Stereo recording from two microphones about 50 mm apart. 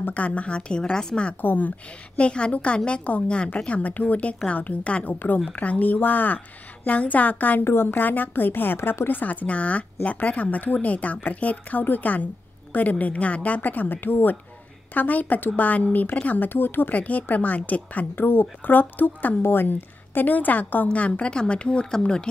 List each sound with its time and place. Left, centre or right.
0.0 s a woman's voice: left
1.4 s a woman's voice: left
2.1 s a woman's voice: left
7.6 s a woman's voice: left
16.9 s a woman's voice: left